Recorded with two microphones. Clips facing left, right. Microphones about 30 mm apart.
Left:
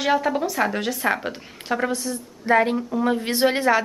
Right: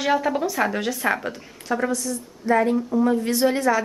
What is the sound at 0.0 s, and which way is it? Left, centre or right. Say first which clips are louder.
A woman's voice: even; centre.